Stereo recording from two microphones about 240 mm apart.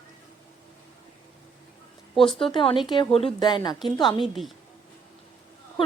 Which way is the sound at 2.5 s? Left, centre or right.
Left.